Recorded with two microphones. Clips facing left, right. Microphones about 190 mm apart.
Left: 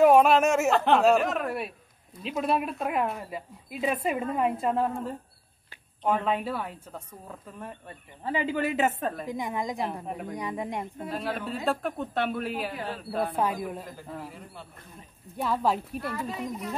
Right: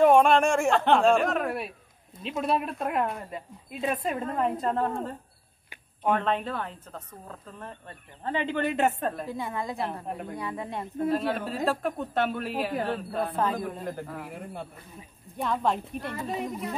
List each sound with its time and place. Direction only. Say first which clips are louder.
0.0 s a woman's voice: even; 5° left (ahead or behind)
9.3 s a woman's voice: left 1 dB; 15° left (ahead or behind)
10.0 s speech: even; centre (ahead or behind)
10.3 s a woman's voice: left 4 dB; 15° left (ahead or behind)
11.1 s speech: right 6 dB; centre (ahead or behind)
12.7 s speech: right 6 dB; 55° right (ahead or behind)
13.4 s a woman's voice: even; 10° left (ahead or behind)
14.3 s a man's voice: right 7 dB; 55° right (ahead or behind)
15.0 s speech: left 1 dB; centre (ahead or behind)